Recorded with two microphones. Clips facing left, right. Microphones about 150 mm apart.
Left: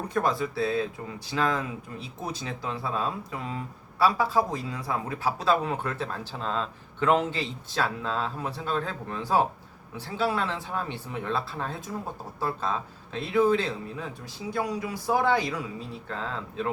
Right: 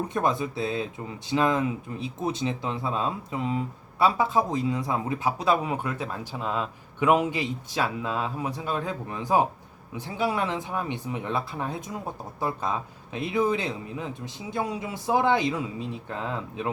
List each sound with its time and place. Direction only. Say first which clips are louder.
0.1 s a man's voice: right 1 dB; 20° right (ahead or behind)